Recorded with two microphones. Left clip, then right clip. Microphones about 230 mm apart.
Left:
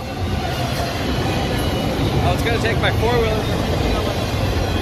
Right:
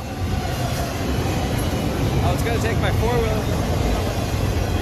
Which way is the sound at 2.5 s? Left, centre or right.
Centre.